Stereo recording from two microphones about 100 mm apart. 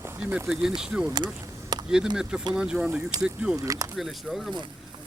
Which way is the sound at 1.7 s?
45° right (ahead or behind).